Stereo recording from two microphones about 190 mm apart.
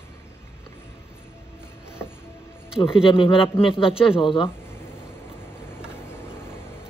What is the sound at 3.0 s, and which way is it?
Speech, 25° left (ahead or behind).